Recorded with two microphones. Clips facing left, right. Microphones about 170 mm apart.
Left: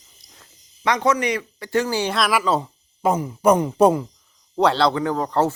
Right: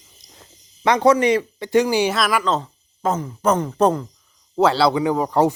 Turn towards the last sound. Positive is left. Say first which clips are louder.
# right 3 dB
turn(degrees=-15)  # may be behind; listen again after turning